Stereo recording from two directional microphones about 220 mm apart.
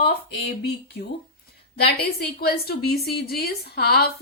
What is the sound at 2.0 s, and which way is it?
A woman's voice, 45° left (ahead or behind).